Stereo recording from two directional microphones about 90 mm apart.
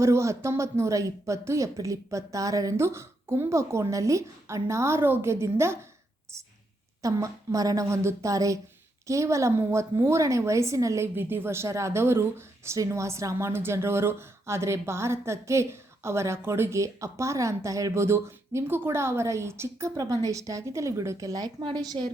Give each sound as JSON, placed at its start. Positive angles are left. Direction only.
{"t": 0.0, "sound": "a woman's voice", "side_deg": -35}
{"t": 7.0, "sound": "a woman's voice", "side_deg": -40}